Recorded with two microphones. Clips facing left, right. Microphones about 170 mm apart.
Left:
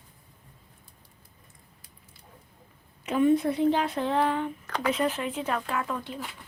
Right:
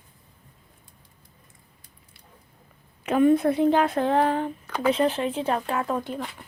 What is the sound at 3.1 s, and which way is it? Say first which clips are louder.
A woman's voice: right 4 dB; 55° right (ahead or behind).